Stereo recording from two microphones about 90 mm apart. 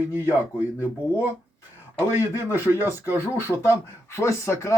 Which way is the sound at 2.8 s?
25° right (ahead or behind).